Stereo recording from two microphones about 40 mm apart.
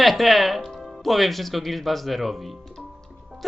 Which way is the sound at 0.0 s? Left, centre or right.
Centre.